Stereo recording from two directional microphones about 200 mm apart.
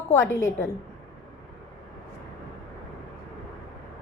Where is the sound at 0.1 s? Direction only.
10° left (ahead or behind).